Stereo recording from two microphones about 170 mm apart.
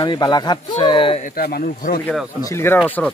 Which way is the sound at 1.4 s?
60° left (ahead or behind).